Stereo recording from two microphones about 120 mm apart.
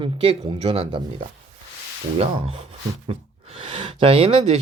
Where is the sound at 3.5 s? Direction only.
50° right (ahead or behind).